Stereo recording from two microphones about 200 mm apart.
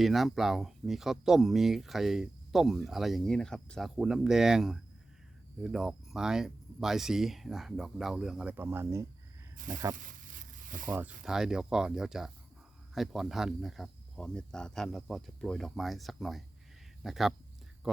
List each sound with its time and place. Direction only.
0.0 s speech: centre (ahead or behind)
10.4 s zipper: 40° right (ahead or behind)
10.8 s speech: 10° right (ahead or behind)